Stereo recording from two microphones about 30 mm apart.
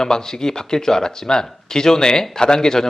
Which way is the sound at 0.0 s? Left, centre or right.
Centre.